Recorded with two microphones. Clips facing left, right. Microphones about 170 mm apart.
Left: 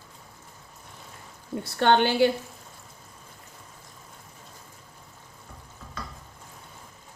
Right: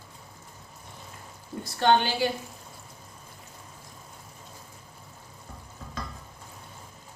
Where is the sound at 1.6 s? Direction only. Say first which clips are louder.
Left 2 dB; 60° left (ahead or behind).